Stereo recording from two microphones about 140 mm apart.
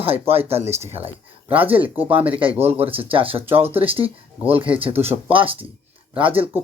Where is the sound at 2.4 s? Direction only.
40° right (ahead or behind).